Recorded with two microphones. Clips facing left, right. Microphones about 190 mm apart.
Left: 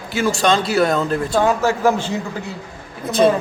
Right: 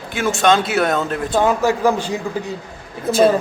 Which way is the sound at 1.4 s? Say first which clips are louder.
Right 1 dB; 15° right (ahead or behind).